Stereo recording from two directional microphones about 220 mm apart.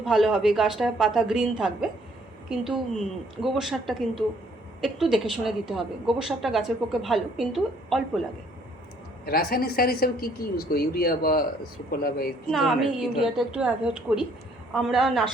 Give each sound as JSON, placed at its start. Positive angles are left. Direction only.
{"t": 0.0, "sound": "a woman's voice", "side_deg": 0}
{"t": 9.2, "sound": "a woman's voice", "side_deg": 45}
{"t": 12.5, "sound": "a woman's voice", "side_deg": 0}